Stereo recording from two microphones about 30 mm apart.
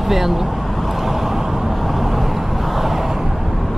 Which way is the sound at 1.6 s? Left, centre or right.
Centre.